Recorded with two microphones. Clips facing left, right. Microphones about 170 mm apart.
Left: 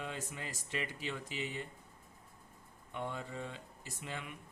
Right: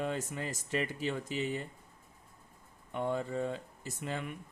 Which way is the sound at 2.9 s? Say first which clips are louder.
Right 8 dB; 45° right (ahead or behind).